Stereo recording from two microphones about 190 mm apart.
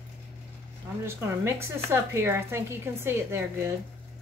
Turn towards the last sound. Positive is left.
turn(degrees=-15)  # may be behind; listen again after turning